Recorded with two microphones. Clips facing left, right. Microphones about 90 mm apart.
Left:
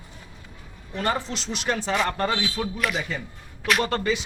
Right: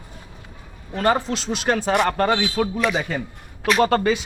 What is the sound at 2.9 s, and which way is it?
Speech, 45° right (ahead or behind).